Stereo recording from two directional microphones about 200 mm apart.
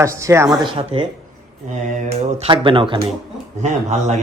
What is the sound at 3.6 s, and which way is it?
Speech, 35° right (ahead or behind).